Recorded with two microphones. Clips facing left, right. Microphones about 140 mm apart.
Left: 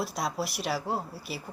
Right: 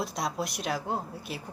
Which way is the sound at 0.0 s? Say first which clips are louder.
Even; centre (ahead or behind).